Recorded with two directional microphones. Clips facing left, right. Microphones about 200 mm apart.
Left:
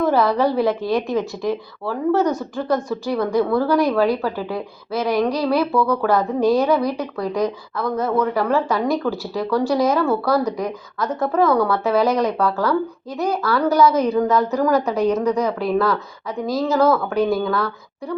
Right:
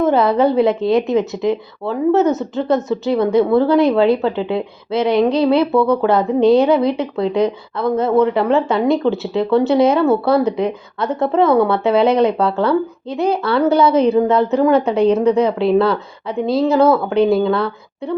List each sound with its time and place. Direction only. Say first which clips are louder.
0.0 s a woman's voice: right 4 dB; 20° right (ahead or behind)